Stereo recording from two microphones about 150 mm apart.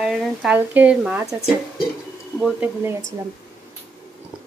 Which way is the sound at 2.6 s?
15° right (ahead or behind).